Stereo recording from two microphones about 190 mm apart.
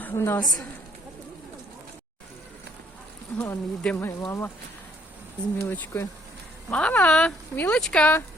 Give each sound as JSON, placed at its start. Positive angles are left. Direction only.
{"t": 0.0, "sound": "a woman's voice", "side_deg": 10}
{"t": 3.3, "sound": "speech", "side_deg": 10}
{"t": 5.5, "sound": "speech", "side_deg": 10}